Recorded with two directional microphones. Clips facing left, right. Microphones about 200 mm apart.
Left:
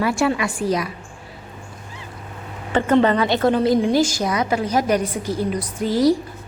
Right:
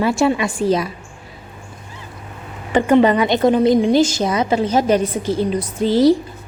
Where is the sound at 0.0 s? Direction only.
25° right (ahead or behind).